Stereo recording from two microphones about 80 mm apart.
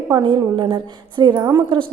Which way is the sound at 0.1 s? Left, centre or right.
Right.